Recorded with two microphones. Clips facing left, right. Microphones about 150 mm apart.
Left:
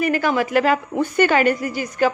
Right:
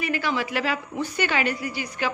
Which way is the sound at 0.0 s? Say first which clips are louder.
Left 7 dB; 50° left (ahead or behind).